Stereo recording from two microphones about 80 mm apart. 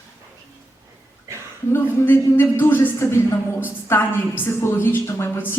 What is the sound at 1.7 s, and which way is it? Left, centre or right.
A man's voice, left.